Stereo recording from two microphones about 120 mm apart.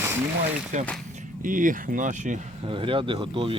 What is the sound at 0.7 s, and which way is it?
Speech, 90° right.